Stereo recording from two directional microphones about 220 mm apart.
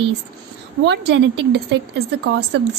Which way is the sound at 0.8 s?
50° right (ahead or behind).